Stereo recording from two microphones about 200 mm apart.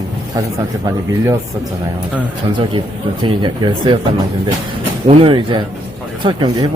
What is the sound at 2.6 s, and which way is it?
Speech, 25° right (ahead or behind).